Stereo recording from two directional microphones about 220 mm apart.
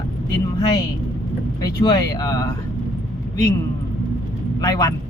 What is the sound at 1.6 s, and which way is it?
Speech, 20° left (ahead or behind).